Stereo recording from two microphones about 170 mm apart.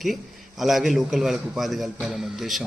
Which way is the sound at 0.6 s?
Centre (ahead or behind).